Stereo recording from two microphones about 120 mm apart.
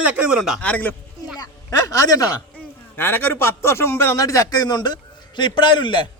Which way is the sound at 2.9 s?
15° left (ahead or behind).